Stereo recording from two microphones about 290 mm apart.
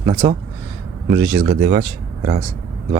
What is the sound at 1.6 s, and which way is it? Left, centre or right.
Speech, right.